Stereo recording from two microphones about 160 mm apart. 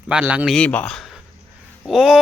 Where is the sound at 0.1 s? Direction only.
5° right (ahead or behind).